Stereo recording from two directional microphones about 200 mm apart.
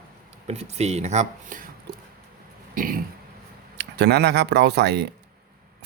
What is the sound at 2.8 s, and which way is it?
Throat clearing, 45° right (ahead or behind).